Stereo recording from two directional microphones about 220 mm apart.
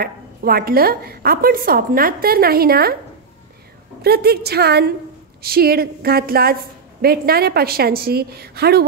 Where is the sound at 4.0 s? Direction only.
45° right (ahead or behind).